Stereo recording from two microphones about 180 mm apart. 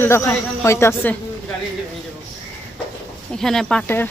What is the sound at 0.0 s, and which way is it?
A woman's voice, 10° left (ahead or behind).